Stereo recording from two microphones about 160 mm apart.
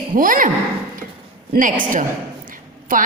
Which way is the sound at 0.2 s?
55° right (ahead or behind).